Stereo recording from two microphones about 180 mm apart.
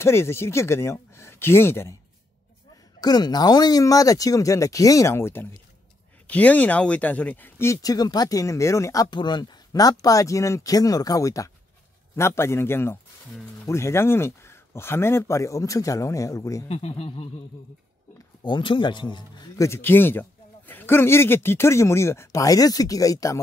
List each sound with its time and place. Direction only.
0.0 s speech: 15° left (ahead or behind)
3.0 s speech: 20° left (ahead or behind)
16.6 s speech: 35° left (ahead or behind)
18.4 s speech: 25° left (ahead or behind)